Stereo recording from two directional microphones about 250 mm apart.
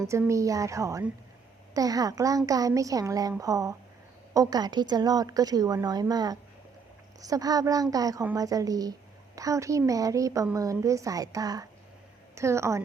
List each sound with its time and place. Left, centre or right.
0.0 s a woman's voice: centre